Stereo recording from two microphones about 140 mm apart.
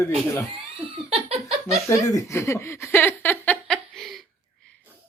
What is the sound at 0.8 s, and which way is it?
Laughter, 45° right (ahead or behind).